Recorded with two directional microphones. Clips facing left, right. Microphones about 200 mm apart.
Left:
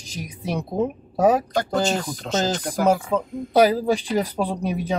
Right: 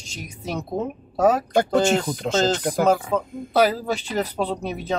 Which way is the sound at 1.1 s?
15° left (ahead or behind).